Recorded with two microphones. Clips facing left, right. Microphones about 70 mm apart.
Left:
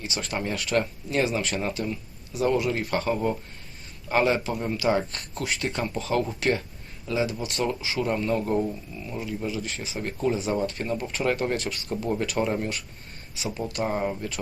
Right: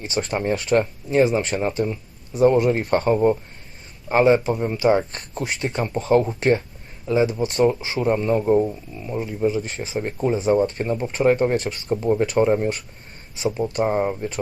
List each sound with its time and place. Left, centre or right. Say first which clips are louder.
0.0 s speech: right 6 dB; right